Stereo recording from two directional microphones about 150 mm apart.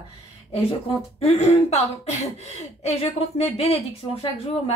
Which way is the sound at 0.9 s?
40° left (ahead or behind).